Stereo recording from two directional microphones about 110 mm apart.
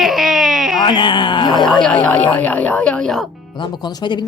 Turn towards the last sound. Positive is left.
turn(degrees=40)  # may be behind; listen again after turning